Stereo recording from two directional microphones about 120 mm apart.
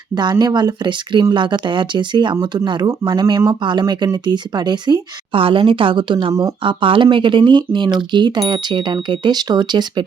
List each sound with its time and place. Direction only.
0.1 s speech: 35° right (ahead or behind)